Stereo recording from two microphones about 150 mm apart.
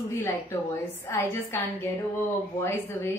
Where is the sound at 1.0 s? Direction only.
15° left (ahead or behind).